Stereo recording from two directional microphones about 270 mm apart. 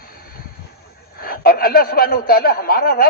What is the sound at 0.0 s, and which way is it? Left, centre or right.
Vehicle, left.